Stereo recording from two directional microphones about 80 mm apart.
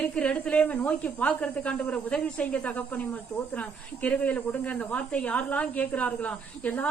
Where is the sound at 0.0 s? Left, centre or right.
Centre.